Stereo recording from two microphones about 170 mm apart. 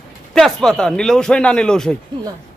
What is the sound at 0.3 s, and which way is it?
A man's voice, 5° left (ahead or behind).